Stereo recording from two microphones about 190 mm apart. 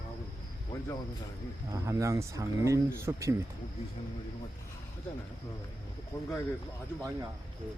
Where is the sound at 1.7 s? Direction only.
15° right (ahead or behind).